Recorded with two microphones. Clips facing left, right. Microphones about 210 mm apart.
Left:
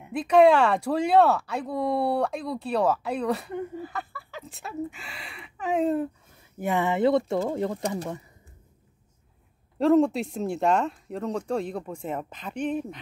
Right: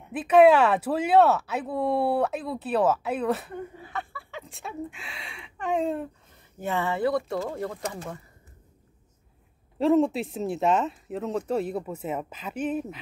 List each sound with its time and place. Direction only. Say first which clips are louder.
0.1 s speech: right 1 dB; 5° right (ahead or behind)
6.6 s speech: left 3 dB; 15° left (ahead or behind)
9.8 s speech: left 1 dB; centre (ahead or behind)